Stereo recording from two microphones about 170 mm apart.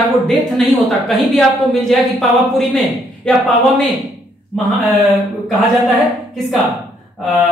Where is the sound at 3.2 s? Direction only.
Centre (ahead or behind).